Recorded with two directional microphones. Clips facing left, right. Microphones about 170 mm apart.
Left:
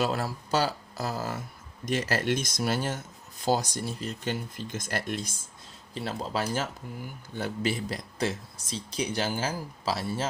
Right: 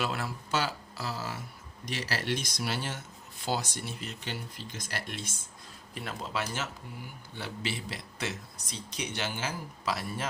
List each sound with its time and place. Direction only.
0.0 s speech: 40° left (ahead or behind)
5.9 s speech: 30° left (ahead or behind)